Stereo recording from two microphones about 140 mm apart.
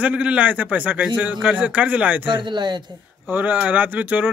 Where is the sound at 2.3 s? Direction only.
35° right (ahead or behind).